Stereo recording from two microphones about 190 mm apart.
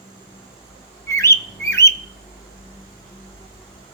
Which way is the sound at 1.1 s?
15° left (ahead or behind).